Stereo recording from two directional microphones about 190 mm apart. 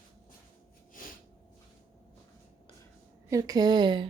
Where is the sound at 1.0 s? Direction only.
45° left (ahead or behind).